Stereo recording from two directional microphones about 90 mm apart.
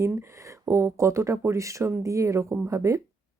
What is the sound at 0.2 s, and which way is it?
Speech, 30° right (ahead or behind).